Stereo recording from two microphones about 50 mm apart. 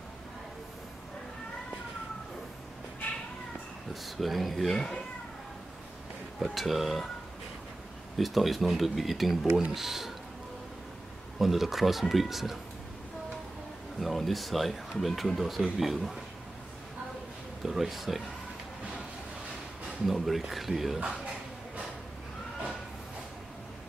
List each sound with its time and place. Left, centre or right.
3.9 s speech: centre
6.4 s speech: centre
8.2 s speech: centre
11.3 s speech: centre
13.9 s speech: centre
17.6 s speech: centre
20.1 s speech: centre